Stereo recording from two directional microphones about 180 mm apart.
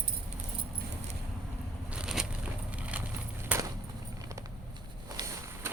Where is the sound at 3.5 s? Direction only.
5° right (ahead or behind).